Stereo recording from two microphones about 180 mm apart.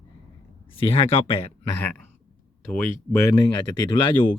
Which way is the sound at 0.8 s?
30° left (ahead or behind).